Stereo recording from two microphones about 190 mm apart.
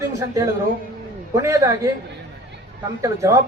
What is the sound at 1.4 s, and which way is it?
Speech, 15° right (ahead or behind).